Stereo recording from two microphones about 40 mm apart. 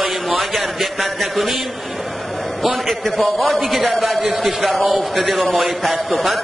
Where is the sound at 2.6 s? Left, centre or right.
Centre.